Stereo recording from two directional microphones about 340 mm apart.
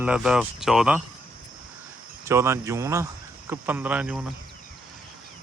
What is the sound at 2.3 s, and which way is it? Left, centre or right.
Speech, centre.